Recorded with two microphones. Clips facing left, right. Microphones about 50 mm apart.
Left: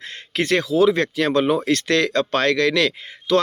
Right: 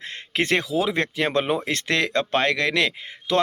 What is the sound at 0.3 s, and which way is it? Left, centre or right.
Speech, right.